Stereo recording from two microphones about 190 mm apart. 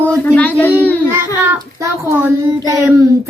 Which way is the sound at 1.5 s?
15° right (ahead or behind).